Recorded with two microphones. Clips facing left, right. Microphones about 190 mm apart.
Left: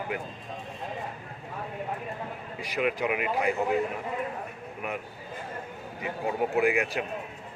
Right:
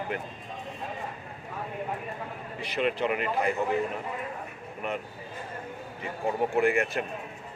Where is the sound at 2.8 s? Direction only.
5° left (ahead or behind).